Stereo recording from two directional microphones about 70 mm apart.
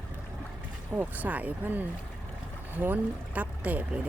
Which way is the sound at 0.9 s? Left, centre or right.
Right.